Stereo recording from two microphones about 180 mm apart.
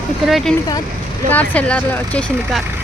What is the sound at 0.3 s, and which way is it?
Speech, centre (ahead or behind).